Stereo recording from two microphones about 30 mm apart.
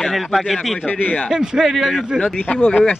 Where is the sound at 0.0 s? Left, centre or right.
Centre.